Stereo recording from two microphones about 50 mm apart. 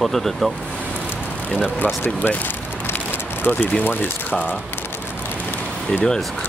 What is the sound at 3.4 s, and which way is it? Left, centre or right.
Speech, left.